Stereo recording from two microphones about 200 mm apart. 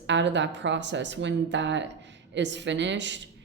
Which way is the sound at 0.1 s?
65° right (ahead or behind).